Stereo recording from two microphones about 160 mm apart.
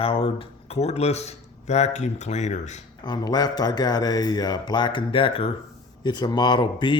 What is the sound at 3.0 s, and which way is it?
Speech, 25° left (ahead or behind).